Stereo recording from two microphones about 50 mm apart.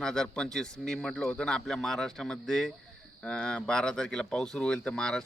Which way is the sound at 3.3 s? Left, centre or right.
Centre.